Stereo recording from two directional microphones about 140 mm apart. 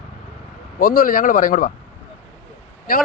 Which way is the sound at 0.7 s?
85° left.